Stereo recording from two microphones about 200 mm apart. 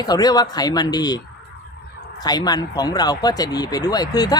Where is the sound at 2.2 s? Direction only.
20° left (ahead or behind).